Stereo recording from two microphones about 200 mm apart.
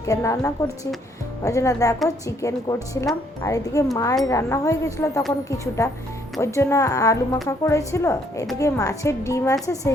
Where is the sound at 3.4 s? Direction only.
15° left (ahead or behind).